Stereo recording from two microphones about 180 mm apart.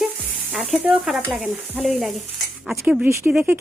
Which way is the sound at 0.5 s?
Centre (ahead or behind).